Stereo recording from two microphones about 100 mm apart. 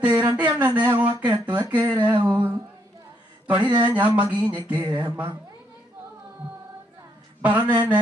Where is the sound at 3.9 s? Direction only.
15° right (ahead or behind).